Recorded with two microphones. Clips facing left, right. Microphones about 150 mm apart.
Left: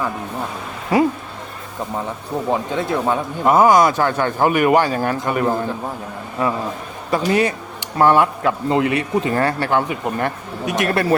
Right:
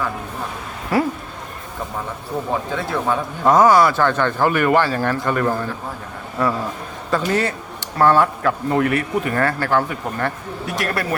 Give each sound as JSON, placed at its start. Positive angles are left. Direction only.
{"t": 0.9, "sound": "speech", "side_deg": 20}
{"t": 2.5, "sound": "speech", "side_deg": 20}
{"t": 7.1, "sound": "speech", "side_deg": 15}